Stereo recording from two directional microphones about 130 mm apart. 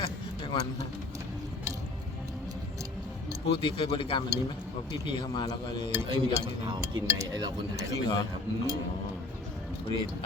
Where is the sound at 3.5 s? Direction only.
40° left (ahead or behind).